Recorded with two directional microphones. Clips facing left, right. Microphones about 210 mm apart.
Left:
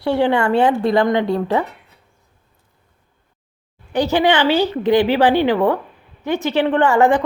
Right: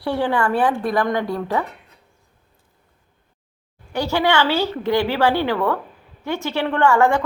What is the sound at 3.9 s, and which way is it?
A woman's voice, 20° left (ahead or behind).